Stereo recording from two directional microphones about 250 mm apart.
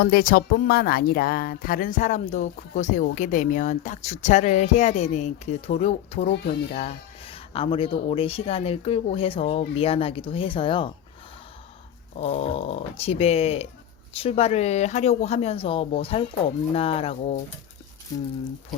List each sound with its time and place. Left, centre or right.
0.0 s speech: left; by 10.9 s centre
12.1 s speech: left